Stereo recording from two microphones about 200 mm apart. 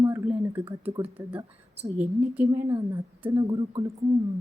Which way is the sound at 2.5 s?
20° right (ahead or behind).